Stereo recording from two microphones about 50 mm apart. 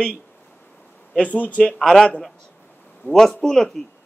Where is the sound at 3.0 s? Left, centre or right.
Left.